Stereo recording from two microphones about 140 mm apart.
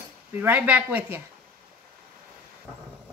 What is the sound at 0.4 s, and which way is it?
Speech, 10° right (ahead or behind).